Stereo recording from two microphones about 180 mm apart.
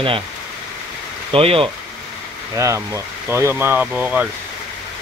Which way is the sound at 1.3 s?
30° right (ahead or behind).